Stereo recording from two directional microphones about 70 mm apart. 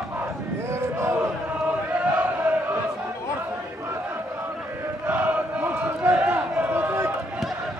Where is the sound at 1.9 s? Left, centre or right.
Centre.